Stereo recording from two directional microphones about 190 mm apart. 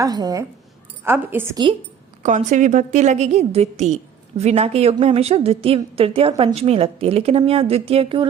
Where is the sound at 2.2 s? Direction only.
40° right (ahead or behind).